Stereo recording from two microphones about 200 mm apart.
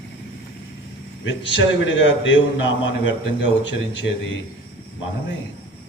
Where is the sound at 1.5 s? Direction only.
70° left (ahead or behind).